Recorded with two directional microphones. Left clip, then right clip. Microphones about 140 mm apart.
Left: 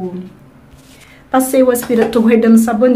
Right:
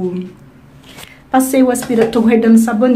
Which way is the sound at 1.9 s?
Centre (ahead or behind).